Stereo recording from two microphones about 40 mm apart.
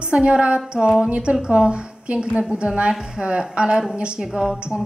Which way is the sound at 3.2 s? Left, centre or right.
Right.